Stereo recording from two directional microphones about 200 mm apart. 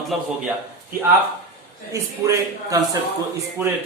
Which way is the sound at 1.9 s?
15° right (ahead or behind).